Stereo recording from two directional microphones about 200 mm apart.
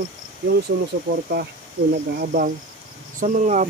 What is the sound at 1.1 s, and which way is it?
Speech, 45° right (ahead or behind).